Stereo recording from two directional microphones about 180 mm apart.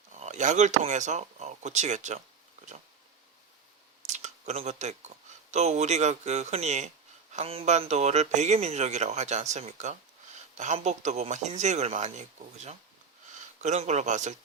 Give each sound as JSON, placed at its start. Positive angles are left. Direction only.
{"t": 0.2, "sound": "speech", "side_deg": -40}
{"t": 4.0, "sound": "speech", "side_deg": -40}